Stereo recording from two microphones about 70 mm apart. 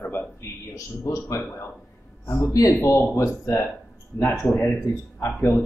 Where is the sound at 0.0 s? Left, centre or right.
Left.